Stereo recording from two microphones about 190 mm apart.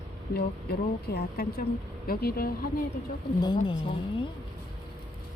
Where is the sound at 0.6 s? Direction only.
55° left (ahead or behind).